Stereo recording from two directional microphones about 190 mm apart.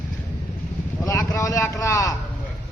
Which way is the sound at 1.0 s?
15° left (ahead or behind).